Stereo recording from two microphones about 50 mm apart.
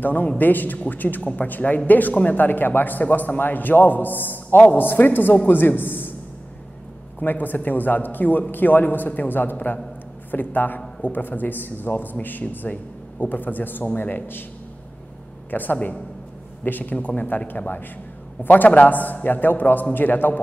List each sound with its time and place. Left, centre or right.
0.0 s a man's voice: left
7.2 s a man's voice: left
15.5 s a man's voice: left
16.9 s a man's voice: left